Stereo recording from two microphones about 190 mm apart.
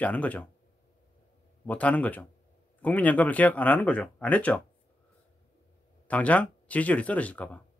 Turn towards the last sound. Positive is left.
turn(degrees=10)  # may be behind; listen again after turning